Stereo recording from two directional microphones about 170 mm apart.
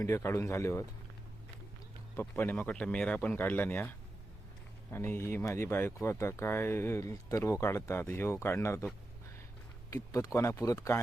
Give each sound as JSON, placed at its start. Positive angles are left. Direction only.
{"t": 0.0, "sound": "speech", "side_deg": 15}
{"t": 2.1, "sound": "speech", "side_deg": 15}
{"t": 9.9, "sound": "speech", "side_deg": 20}